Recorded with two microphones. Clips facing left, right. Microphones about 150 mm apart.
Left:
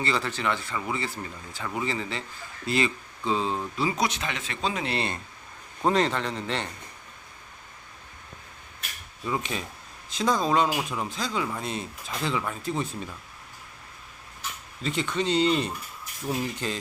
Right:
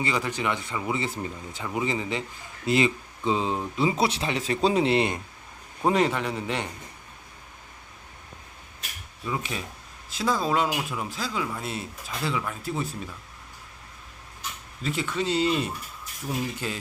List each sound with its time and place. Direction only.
0.0 s speech: 15° right (ahead or behind); by 4.9 s 35° right (ahead or behind)
4.9 s speech: 15° right (ahead or behind)
9.2 s speech: centre (ahead or behind)
14.8 s speech: 5° right (ahead or behind)